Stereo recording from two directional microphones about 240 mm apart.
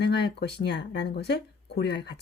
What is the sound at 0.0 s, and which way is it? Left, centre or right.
Speech, left.